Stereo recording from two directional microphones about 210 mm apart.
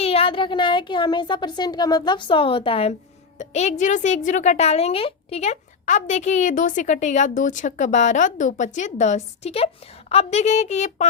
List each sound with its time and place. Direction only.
0.0 s a woman's voice: 25° left (ahead or behind)